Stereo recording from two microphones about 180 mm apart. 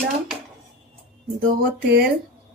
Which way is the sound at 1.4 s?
55° right (ahead or behind).